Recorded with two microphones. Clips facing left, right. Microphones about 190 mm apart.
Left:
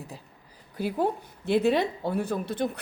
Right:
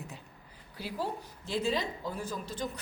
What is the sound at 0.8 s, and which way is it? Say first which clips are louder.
Speech: left 9 dB; 55° left (ahead or behind).